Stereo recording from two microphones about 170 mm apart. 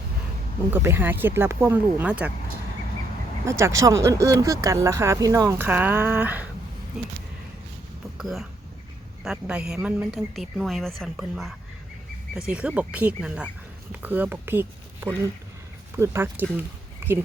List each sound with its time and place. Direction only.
0.7 s speech: 15° right (ahead or behind)
3.4 s speech: 15° right (ahead or behind)
8.2 s a woman's voice: centre (ahead or behind)
17.0 s a sound: 15° right (ahead or behind)